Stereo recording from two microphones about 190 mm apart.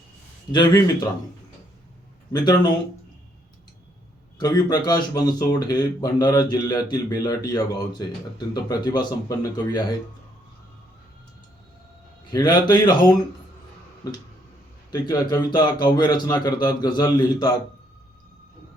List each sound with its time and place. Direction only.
0.5 s speech: 25° left (ahead or behind)
2.3 s speech: 20° left (ahead or behind)
4.4 s speech: 20° left (ahead or behind)
12.3 s speech: 20° left (ahead or behind)